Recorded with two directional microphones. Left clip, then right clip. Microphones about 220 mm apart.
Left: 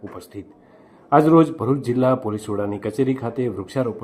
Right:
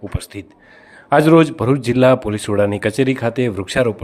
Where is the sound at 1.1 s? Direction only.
30° right (ahead or behind).